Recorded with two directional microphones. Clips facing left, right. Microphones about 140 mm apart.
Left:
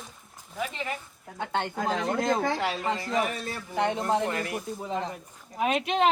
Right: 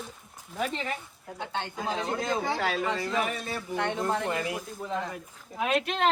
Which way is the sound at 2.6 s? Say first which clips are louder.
Even; 25° left (ahead or behind).